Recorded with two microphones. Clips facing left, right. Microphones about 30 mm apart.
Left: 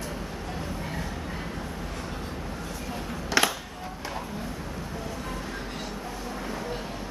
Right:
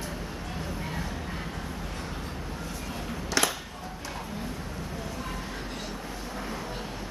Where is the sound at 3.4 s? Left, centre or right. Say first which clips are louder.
Left 3 dB; left.